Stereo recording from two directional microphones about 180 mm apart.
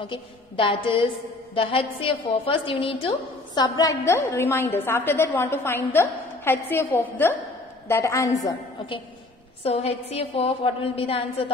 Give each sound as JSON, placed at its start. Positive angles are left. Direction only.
{"t": 0.0, "sound": "a woman's voice", "side_deg": 30}
{"t": 9.6, "sound": "a woman's voice", "side_deg": 35}